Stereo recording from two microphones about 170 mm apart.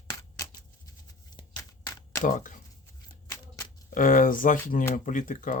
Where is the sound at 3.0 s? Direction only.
15° left (ahead or behind).